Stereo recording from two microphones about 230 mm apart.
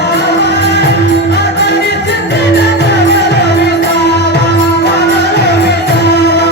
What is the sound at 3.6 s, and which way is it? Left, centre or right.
Music, left.